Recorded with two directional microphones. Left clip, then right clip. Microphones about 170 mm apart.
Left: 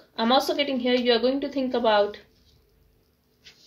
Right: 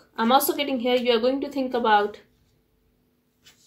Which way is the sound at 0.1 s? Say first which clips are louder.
Right 2 dB; 40° right (ahead or behind).